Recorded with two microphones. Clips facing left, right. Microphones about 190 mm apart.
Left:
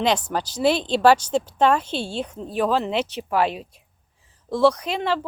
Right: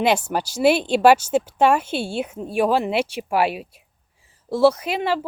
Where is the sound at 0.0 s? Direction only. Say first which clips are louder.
Right 2 dB; 10° right (ahead or behind).